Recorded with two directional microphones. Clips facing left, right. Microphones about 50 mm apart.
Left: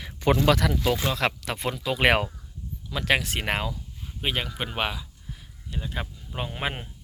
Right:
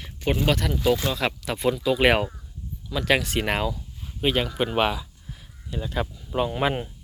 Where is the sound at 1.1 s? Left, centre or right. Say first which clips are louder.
Even; left.